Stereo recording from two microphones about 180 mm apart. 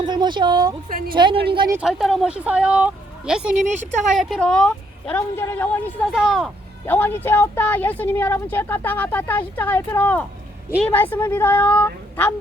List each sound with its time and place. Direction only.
0.0 s speech: 25° right (ahead or behind)
0.9 s a woman's voice: 55° right (ahead or behind)
1.1 s speech: 25° right (ahead or behind)
1.7 s a woman's voice: 5° right (ahead or behind)
6.1 s a woman's voice: centre (ahead or behind)
6.8 s speech: 10° left (ahead or behind)